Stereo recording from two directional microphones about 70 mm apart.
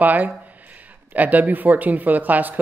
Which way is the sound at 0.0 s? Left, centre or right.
Right.